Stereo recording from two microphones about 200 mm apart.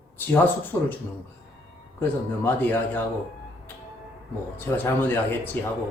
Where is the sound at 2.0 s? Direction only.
10° left (ahead or behind).